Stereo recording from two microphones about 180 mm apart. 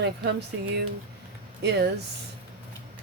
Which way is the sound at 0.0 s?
75° right (ahead or behind).